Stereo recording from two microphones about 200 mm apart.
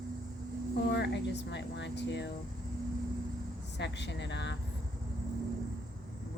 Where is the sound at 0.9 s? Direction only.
60° left (ahead or behind).